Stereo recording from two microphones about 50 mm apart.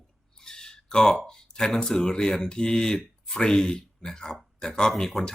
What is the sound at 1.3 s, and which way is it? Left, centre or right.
Speech, centre.